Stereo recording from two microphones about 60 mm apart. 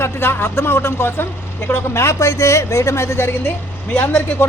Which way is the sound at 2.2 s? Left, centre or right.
Left.